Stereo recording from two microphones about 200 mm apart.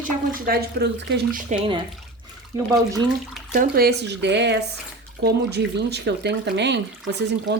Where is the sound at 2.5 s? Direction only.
15° right (ahead or behind).